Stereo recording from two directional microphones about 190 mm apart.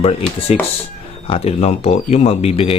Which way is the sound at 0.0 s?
30° left (ahead or behind).